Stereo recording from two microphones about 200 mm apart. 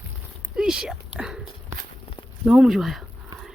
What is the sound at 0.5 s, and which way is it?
Speech, 5° right (ahead or behind).